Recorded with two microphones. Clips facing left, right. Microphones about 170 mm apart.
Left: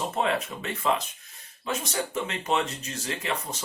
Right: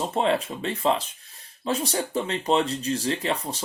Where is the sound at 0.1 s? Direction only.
30° right (ahead or behind).